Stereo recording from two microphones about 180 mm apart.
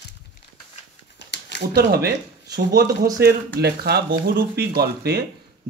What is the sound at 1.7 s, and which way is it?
Speech, 60° right (ahead or behind).